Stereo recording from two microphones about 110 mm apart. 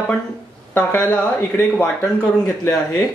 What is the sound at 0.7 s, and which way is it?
Speech, 15° left (ahead or behind).